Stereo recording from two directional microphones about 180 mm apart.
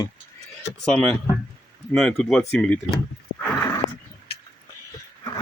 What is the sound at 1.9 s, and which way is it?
Speech, 5° left (ahead or behind).